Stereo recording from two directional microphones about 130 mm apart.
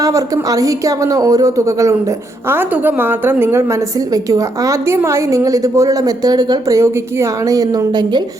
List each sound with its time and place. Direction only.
0.0 s speech: 25° right (ahead or behind)